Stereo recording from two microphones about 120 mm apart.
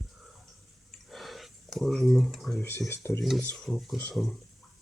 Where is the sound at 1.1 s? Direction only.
Centre (ahead or behind).